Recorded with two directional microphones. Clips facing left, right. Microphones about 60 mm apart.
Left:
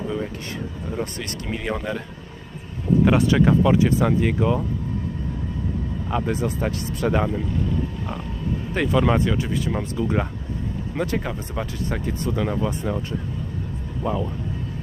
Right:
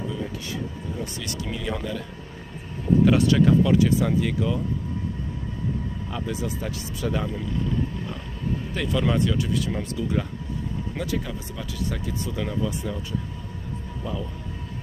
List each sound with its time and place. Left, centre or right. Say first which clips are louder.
1.5 s speech: left 4 dB; left
3.0 s speech: left 1 dB; left
6.1 s speech: left 7 dB; left
8.7 s speech: left 5 dB; left
10.0 s speech: left 4 dB; left